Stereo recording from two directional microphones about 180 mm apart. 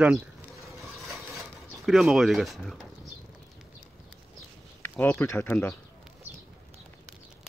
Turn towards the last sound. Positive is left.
turn(degrees=10)  # may be behind; listen again after turning